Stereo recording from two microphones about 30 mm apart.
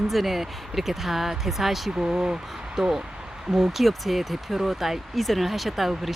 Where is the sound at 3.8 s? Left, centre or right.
Centre.